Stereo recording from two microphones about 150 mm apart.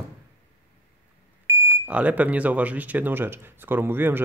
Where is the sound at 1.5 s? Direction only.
20° right (ahead or behind).